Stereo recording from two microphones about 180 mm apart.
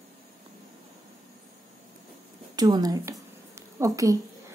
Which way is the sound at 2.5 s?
20° right (ahead or behind).